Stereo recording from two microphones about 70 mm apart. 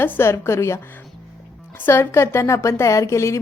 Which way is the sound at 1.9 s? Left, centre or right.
Left.